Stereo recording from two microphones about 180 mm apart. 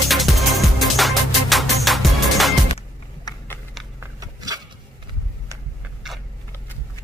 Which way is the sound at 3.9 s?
20° right (ahead or behind).